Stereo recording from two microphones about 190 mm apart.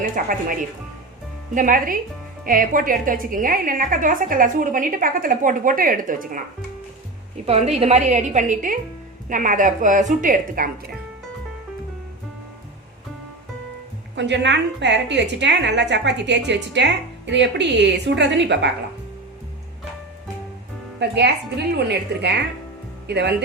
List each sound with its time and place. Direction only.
0.0 s a woman's voice: 45° right (ahead or behind)
1.5 s a woman's voice: 45° right (ahead or behind)
7.4 s a woman's voice: 35° right (ahead or behind)
14.2 s a woman's voice: 65° right (ahead or behind)
21.0 s a woman's voice: 60° right (ahead or behind)